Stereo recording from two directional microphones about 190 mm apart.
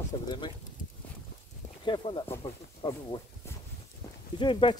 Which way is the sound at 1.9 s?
25° left (ahead or behind).